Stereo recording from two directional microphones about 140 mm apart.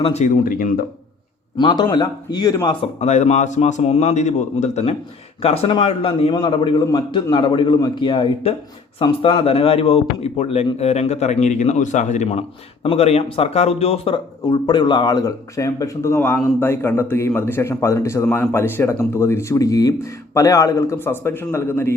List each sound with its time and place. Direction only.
0.0 s speech: 55° left (ahead or behind)
0.4 s speech: 90° left
1.5 s a man's voice: 35° left (ahead or behind)
2.8 s a man's voice: 55° left (ahead or behind)
14.4 s speech: 30° left (ahead or behind); by 21.9 s 15° left (ahead or behind)